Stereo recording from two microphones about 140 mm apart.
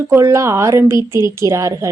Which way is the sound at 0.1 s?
20° right (ahead or behind).